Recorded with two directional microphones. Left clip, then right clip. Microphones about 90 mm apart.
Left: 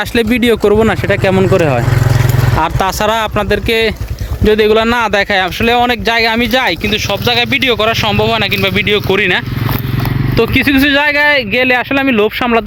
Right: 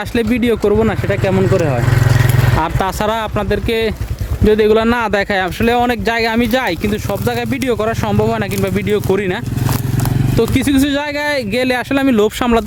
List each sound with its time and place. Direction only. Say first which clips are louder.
0.1 s speech: left 3 dB; 5° right (ahead or behind)
0.8 s speech: left 4 dB; 10° left (ahead or behind)
1.5 s speech: left 4 dB; 35° left (ahead or behind)
2.7 s speech: left 4 dB; 30° right (ahead or behind)
4.4 s speech: left 2 dB; 35° right (ahead or behind); by 9.2 s 55° right (ahead or behind)
10.3 s speech: left 4 dB; 45° right (ahead or behind); by 11.3 s 30° right (ahead or behind)
11.3 s speech: left 6 dB; 55° right (ahead or behind); by 12.6 s 80° right